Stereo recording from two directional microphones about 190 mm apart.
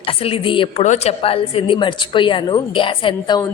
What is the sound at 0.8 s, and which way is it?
A woman's voice, 35° left (ahead or behind).